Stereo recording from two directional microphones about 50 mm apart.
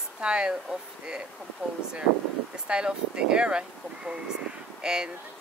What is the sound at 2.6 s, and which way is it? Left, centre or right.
Speech, right.